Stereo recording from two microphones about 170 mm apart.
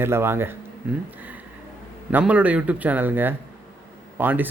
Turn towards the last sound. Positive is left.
turn(degrees=-10)  # may be behind; listen again after turning